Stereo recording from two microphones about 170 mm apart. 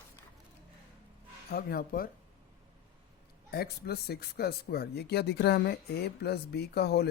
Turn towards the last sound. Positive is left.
turn(degrees=70)  # may be behind; listen again after turning